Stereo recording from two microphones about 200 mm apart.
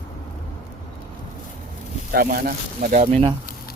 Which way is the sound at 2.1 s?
45° right (ahead or behind).